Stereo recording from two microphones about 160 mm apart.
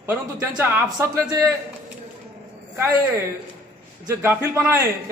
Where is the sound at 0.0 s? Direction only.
15° right (ahead or behind).